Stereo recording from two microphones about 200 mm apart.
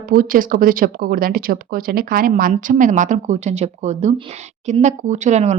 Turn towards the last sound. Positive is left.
turn(degrees=-35)  # may be behind; listen again after turning